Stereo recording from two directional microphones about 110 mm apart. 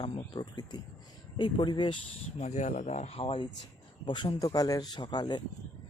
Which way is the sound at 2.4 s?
90° left.